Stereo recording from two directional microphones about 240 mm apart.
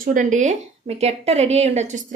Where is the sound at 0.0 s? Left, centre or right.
Right.